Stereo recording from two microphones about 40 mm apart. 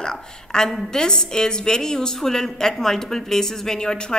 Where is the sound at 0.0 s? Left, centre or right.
Centre.